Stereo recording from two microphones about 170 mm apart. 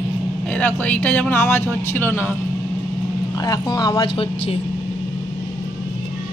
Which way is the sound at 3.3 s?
20° left (ahead or behind).